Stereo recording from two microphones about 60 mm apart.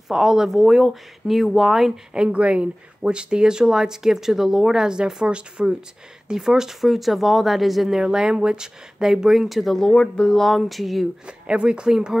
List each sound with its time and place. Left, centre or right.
0.1 s speech: centre
2.1 s speech: centre
11.2 s speech: centre